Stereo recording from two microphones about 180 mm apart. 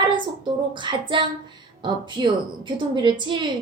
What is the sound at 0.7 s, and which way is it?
A woman's voice, 25° right (ahead or behind).